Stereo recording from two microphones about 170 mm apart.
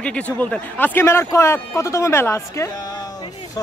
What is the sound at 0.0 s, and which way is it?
A man's voice, 5° left (ahead or behind).